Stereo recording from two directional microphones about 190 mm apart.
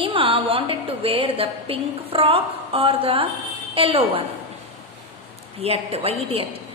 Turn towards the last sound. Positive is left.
turn(degrees=-30)  # may be behind; listen again after turning